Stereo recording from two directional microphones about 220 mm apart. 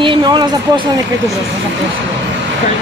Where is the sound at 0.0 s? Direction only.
20° right (ahead or behind).